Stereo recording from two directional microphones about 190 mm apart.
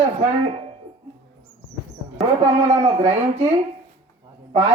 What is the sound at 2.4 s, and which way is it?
A man's voice, 35° right (ahead or behind).